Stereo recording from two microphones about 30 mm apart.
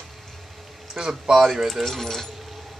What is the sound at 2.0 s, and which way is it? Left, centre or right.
Speech, centre.